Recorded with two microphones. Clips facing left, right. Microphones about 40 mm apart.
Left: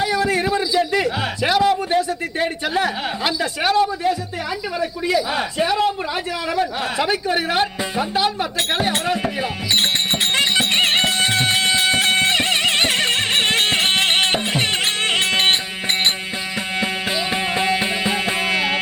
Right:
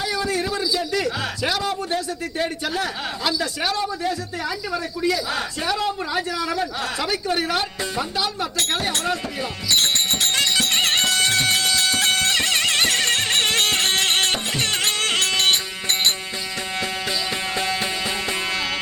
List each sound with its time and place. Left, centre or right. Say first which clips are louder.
0.0 s a man's voice: left 5 dB; left
10.3 s music: left 4 dB; left
17.5 s music: left 5 dB; left